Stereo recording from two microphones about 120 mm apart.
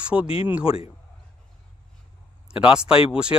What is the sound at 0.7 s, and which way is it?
Speech, 50° left (ahead or behind).